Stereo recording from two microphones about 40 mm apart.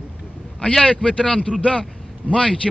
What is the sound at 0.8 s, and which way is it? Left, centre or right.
A man's voice, left.